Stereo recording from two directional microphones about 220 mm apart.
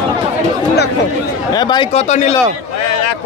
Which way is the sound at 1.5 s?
20° left (ahead or behind).